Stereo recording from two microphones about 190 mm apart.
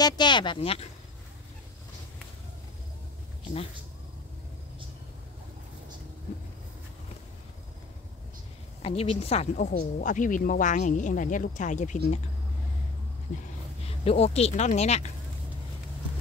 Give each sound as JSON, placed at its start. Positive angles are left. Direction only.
{"t": 0.0, "sound": "speech", "side_deg": 25}
{"t": 8.8, "sound": "speech", "side_deg": 30}
{"t": 13.8, "sound": "speech", "side_deg": 30}